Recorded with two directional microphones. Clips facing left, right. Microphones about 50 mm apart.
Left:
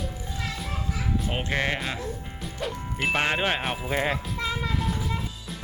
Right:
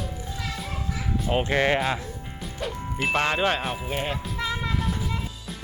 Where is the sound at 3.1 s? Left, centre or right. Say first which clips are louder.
Right 2 dB; centre.